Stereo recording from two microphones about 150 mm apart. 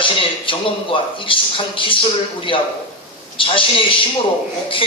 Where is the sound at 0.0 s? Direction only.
35° left (ahead or behind).